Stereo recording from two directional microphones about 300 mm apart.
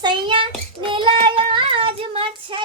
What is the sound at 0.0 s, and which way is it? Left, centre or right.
Child singing, centre.